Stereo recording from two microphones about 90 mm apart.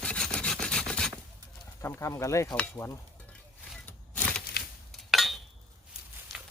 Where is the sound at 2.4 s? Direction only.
15° left (ahead or behind).